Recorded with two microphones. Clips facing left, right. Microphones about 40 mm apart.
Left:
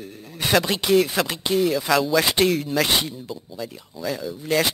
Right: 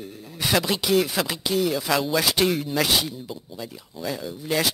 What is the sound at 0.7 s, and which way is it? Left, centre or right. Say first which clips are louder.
Speech: left 3 dB; centre.